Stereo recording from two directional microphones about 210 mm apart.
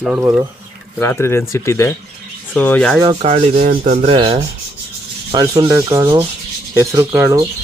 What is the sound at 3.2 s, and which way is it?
Rub, 30° right (ahead or behind).